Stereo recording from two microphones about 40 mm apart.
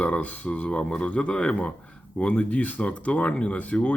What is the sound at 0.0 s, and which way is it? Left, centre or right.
Speech, left.